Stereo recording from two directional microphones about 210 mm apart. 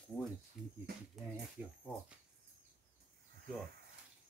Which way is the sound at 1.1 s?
5° right (ahead or behind).